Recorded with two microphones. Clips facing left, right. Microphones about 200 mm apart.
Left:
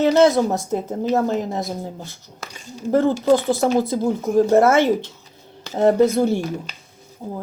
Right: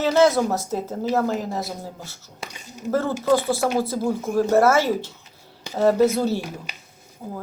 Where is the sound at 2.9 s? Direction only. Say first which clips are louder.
Left 4 dB; 15° left (ahead or behind).